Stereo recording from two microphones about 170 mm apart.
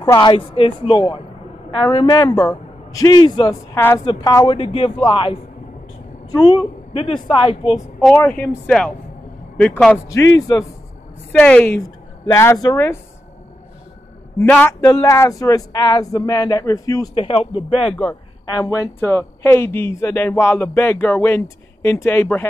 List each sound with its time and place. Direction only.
0.0 s speech: 25° left (ahead or behind)
4.0 s speech: 25° left (ahead or behind)
4.5 s a woman's voice: 35° left (ahead or behind)
7.7 s speech: centre (ahead or behind)
11.3 s a woman's voice: 10° left (ahead or behind)
14.4 s speech: 10° left (ahead or behind)
17.1 s a woman's voice: 35° left (ahead or behind)
18.5 s speech: 20° left (ahead or behind)